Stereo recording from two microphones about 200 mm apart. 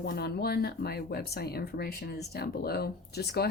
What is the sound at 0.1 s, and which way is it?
Speech, 50° left (ahead or behind).